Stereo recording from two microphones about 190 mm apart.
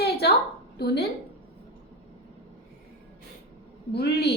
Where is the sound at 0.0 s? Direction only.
60° left (ahead or behind).